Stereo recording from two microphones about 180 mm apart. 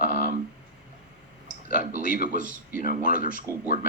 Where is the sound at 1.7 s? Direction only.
50° left (ahead or behind).